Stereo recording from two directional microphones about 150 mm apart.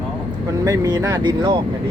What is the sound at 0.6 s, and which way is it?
Speech, 25° right (ahead or behind).